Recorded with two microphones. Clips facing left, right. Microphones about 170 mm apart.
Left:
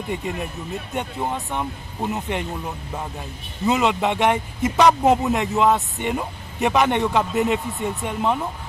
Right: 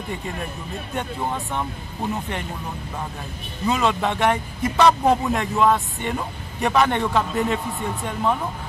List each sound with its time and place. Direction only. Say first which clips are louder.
0.9 s speech: even; 15° left (ahead or behind)
3.6 s a man's voice: left 2 dB; 20° left (ahead or behind)